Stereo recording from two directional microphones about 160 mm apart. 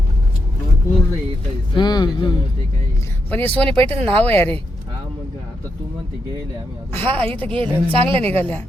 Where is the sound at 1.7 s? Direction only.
25° left (ahead or behind).